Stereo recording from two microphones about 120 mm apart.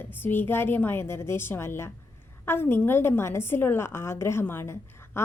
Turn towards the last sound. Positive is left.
turn(degrees=20)  # may be behind; listen again after turning